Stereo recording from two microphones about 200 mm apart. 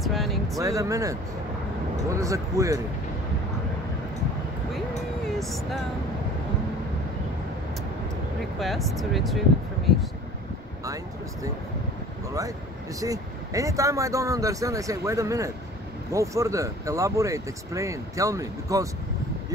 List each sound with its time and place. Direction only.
0.0 s music: centre (ahead or behind)
0.6 s speech: 15° right (ahead or behind)
5.4 s speech: centre (ahead or behind)
8.5 s speech: centre (ahead or behind)
13.0 s speech: 15° right (ahead or behind)